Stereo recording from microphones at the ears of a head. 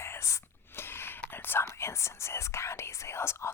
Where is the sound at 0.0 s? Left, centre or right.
Left.